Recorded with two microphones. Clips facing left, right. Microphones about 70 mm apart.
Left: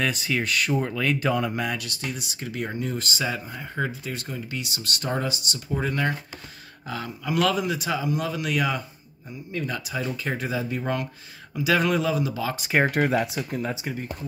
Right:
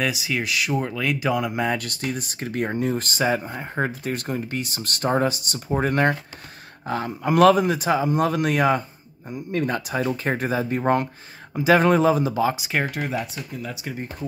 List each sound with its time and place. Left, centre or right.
0.0 s speech: centre
1.8 s speech: right
5.5 s speech: right
9.3 s speech: right
13.0 s speech: left